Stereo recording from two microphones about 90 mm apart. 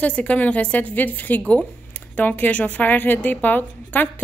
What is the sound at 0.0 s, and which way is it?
A woman's voice, 15° left (ahead or behind).